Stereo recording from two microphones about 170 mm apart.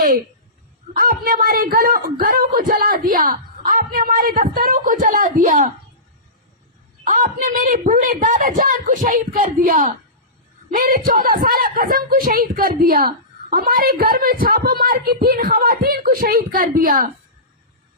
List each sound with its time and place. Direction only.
0.9 s a woman's voice: 55° right (ahead or behind)
7.0 s a woman's voice: 50° right (ahead or behind)